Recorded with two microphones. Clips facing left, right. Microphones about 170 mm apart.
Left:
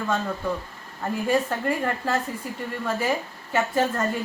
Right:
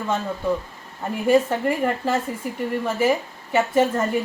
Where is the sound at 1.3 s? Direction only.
15° right (ahead or behind).